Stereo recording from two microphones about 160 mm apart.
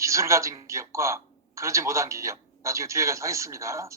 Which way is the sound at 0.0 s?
20° right (ahead or behind).